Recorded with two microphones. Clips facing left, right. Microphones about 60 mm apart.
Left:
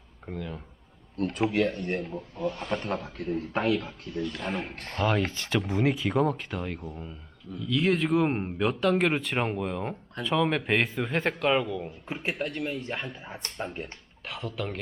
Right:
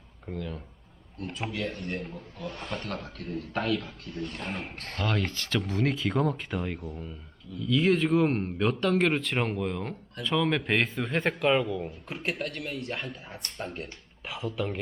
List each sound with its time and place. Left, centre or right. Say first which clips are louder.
0.3 s speech: even; centre
1.1 s speech: left 8 dB; left
2.5 s speech: left 3 dB; centre
3.3 s a man's voice: left 2 dB; left
3.8 s speech: left 3 dB; centre
4.4 s speech: left 3 dB; centre
8.3 s a man's voice: even; centre
8.5 s speech: left 3 dB; centre
12.0 s speech: left 4 dB; centre
14.3 s speech: right 2 dB; centre